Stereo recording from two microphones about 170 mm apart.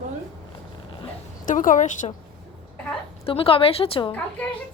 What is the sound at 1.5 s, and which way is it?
Speech, 50° left (ahead or behind).